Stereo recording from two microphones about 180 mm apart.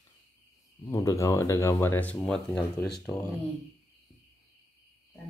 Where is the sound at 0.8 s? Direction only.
15° left (ahead or behind).